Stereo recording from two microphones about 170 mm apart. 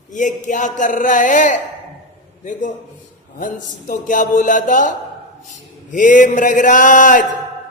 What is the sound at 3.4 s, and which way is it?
A man's voice, 50° left (ahead or behind).